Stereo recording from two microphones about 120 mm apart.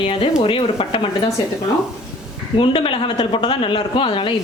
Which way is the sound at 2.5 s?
50° left (ahead or behind).